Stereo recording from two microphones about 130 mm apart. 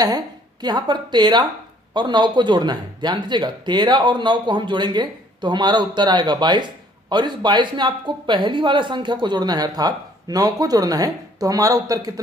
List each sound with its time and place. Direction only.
0.0 s speech: 30° right (ahead or behind)